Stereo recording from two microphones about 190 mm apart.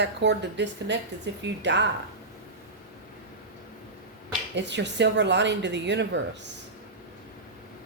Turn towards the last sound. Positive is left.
turn(degrees=-65)  # may be behind; listen again after turning